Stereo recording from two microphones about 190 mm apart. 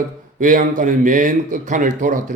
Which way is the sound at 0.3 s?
45° right (ahead or behind).